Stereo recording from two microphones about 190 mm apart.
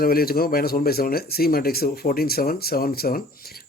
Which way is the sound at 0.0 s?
50° left (ahead or behind).